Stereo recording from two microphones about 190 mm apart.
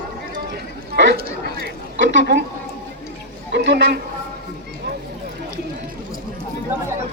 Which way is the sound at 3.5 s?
65° right (ahead or behind).